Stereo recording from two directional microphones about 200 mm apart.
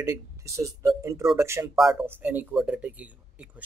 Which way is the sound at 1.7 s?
Centre (ahead or behind).